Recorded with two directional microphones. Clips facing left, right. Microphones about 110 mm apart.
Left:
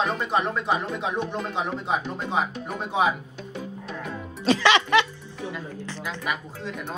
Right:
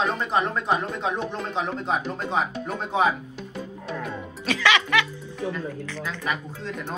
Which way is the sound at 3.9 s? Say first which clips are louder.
Right 3 dB; centre (ahead or behind).